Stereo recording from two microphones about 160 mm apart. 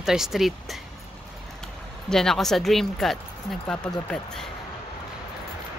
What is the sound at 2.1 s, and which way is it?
Speech, 5° left (ahead or behind).